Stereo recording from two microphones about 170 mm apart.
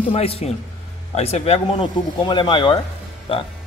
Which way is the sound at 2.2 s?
25° left (ahead or behind).